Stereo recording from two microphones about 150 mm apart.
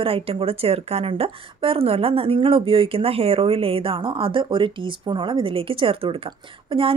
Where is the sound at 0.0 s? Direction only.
40° right (ahead or behind).